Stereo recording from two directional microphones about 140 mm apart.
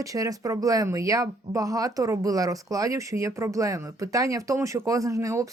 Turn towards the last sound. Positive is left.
turn(degrees=-20)  # may be behind; listen again after turning